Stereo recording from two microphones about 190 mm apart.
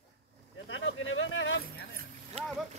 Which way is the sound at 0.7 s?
85° left.